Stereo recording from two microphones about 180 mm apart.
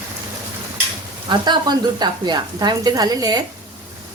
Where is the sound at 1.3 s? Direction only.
25° right (ahead or behind).